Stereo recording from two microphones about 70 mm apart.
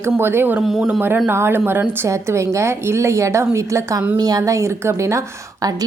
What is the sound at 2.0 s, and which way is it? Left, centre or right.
A woman's voice, right.